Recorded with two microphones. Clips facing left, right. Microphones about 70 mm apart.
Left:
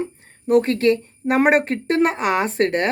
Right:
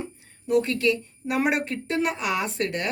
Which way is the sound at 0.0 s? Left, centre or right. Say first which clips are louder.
Left 8 dB; left.